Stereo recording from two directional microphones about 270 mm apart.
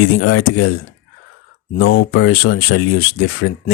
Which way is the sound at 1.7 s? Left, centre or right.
Left.